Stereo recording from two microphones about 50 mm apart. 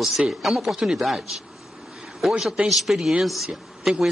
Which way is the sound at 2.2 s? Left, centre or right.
Centre.